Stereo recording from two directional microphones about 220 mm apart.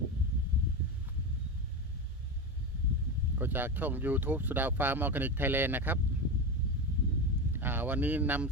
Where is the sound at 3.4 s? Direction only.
10° right (ahead or behind).